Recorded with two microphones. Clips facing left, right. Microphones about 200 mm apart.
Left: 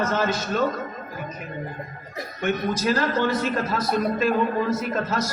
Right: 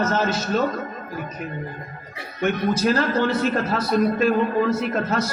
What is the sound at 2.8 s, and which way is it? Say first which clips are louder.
Speech: right 2 dB; 50° right (ahead or behind).